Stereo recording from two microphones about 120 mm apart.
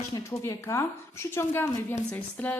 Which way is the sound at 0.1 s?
25° left (ahead or behind).